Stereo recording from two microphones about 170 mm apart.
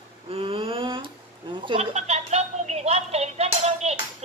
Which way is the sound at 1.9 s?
40° right (ahead or behind).